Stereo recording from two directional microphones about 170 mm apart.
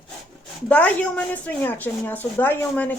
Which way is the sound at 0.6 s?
10° left (ahead or behind).